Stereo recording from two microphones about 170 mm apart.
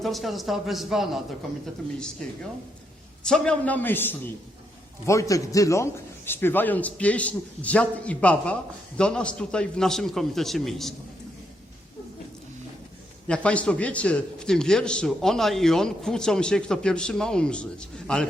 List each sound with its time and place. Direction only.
0.0 s a man's voice: centre (ahead or behind)
3.2 s a man's voice: 5° left (ahead or behind)
13.2 s a man's voice: 5° left (ahead or behind)